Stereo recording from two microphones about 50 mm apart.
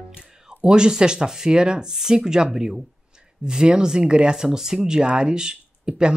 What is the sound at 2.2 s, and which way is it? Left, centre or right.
Speech, centre.